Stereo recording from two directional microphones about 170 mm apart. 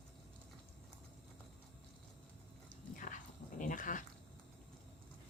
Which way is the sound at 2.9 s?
50° left (ahead or behind).